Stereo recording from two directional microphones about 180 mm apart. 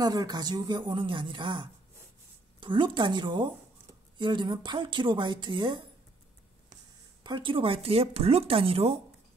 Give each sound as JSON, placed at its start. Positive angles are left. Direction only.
{"t": 0.0, "sound": "speech", "side_deg": -20}
{"t": 7.2, "sound": "speech", "side_deg": -25}